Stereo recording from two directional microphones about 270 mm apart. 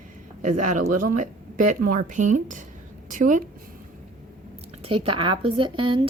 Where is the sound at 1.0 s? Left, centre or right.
Right.